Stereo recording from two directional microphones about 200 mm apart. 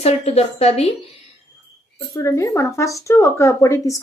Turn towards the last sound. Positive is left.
turn(degrees=15)  # may be behind; listen again after turning